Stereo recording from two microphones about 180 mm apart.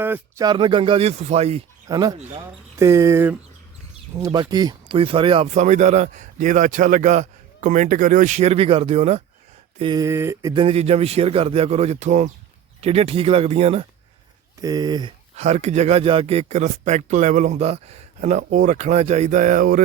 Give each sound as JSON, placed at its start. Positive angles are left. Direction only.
{"t": 0.0, "sound": "speech", "side_deg": -10}
{"t": 0.4, "sound": "speech", "side_deg": -25}
{"t": 1.9, "sound": "speech", "side_deg": -20}
{"t": 9.7, "sound": "speech", "side_deg": -25}
{"t": 10.5, "sound": "speech", "side_deg": -30}
{"t": 14.6, "sound": "speech", "side_deg": -20}
{"t": 15.4, "sound": "speech", "side_deg": -40}